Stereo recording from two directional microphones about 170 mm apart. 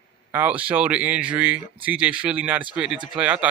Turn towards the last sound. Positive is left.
turn(degrees=-5)  # may be behind; listen again after turning